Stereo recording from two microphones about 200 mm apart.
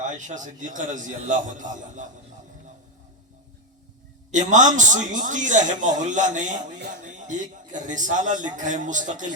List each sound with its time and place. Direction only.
0.0 s a man's voice: 40° right (ahead or behind)
4.3 s a man's voice: 40° right (ahead or behind)